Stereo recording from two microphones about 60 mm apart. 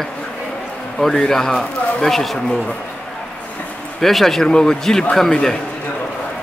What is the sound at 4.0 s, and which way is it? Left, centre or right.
A man's voice, centre.